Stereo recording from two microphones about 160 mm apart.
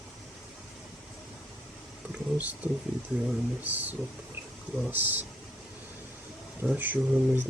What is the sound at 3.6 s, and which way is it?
Speech, 10° right (ahead or behind).